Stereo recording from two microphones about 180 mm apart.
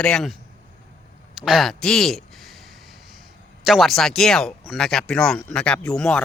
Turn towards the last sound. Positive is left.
turn(degrees=5)  # may be behind; listen again after turning